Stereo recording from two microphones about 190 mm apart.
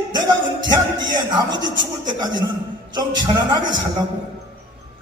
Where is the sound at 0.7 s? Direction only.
25° right (ahead or behind).